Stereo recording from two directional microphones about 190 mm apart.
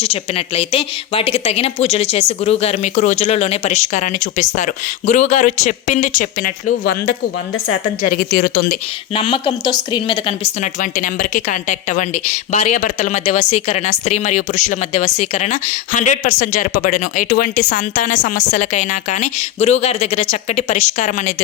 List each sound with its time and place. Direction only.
0.0 s a woman's voice: 30° left (ahead or behind); by 7.1 s 45° left (ahead or behind)
8.1 s speech: 50° left (ahead or behind)
9.1 s a woman's voice: 30° left (ahead or behind)